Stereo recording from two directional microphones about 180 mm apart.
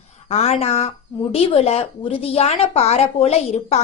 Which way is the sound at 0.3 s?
35° left (ahead or behind).